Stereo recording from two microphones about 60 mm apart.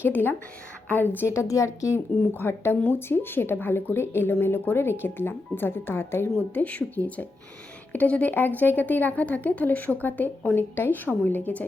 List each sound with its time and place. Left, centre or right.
0.0 s speech: left
1.3 s a woman's voice: left
2.3 s speech: left
6.5 s speech: left